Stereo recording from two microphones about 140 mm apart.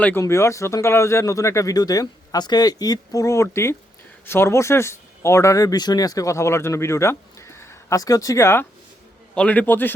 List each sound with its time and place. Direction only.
0.0 s a man's voice: 15° left (ahead or behind)